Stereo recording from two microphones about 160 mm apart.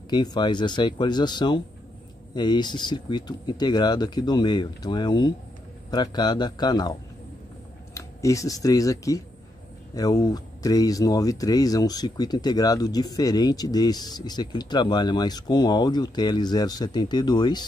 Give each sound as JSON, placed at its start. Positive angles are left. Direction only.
{"t": 0.1, "sound": "speech", "side_deg": 25}